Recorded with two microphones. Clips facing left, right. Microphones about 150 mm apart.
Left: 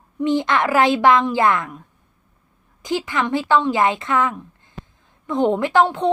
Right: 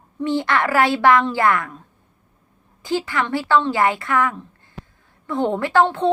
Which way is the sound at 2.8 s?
20° left (ahead or behind).